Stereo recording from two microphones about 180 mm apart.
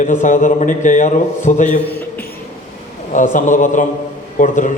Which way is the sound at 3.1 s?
45° left (ahead or behind).